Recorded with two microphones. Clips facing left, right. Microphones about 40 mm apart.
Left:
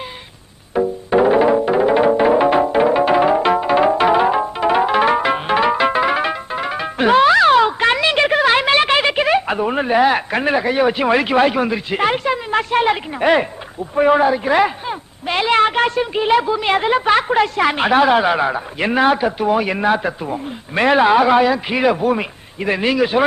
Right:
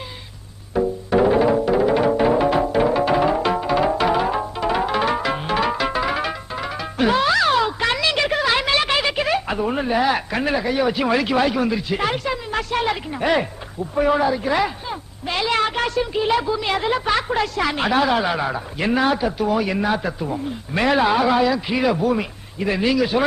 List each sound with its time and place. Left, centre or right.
0.7 s music: left
13.9 s a man's voice: left